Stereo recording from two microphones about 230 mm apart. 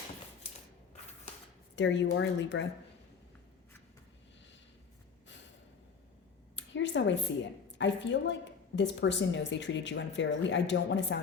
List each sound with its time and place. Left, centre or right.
1.7 s a woman's voice: left
6.6 s a sound: left
7.8 s a woman's voice: left